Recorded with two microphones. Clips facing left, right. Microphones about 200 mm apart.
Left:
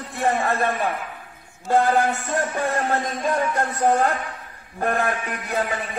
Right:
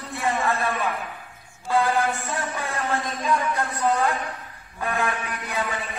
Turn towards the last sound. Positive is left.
turn(degrees=40)  # may be behind; listen again after turning